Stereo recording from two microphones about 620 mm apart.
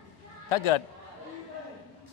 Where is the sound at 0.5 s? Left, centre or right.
Left.